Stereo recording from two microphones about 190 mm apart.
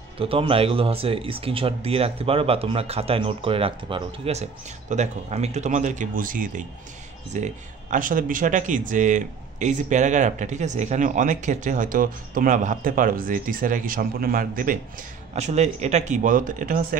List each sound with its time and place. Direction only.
0.2 s speech: 30° right (ahead or behind); by 16.8 s 45° right (ahead or behind)